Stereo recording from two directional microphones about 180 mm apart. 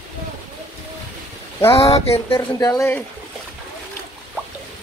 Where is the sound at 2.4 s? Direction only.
15° left (ahead or behind).